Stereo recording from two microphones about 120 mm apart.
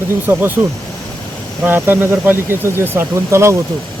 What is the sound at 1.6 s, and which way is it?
Speech, 15° right (ahead or behind).